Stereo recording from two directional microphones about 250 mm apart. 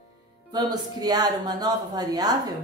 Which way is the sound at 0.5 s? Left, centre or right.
Centre.